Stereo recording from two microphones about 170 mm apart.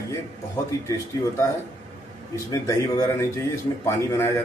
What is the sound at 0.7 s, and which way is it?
Speech, 20° left (ahead or behind).